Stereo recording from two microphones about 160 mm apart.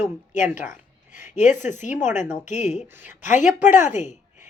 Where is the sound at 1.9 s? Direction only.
15° right (ahead or behind).